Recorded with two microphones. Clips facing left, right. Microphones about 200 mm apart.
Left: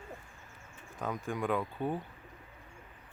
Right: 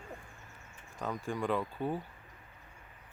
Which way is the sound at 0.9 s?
Centre (ahead or behind).